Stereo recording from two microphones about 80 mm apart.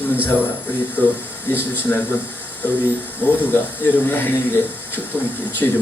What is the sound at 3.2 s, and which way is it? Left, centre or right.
Speech, left.